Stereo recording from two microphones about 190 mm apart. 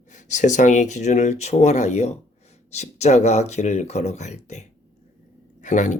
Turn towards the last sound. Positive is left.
turn(degrees=40)  # may be behind; listen again after turning